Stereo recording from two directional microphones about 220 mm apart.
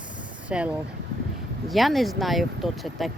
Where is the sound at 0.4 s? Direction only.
5° right (ahead or behind).